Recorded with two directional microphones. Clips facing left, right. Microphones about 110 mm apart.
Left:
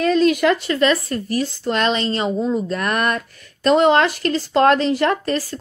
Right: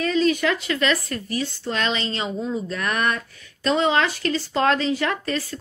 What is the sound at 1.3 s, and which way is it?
Speech, 50° left (ahead or behind).